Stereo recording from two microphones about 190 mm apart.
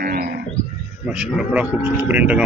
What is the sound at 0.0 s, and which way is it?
Wild animals, 50° right (ahead or behind).